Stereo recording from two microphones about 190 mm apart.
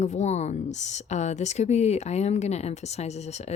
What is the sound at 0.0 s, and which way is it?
Speech, 35° left (ahead or behind).